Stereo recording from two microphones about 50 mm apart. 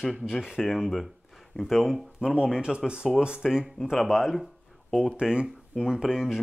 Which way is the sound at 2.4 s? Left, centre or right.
Centre.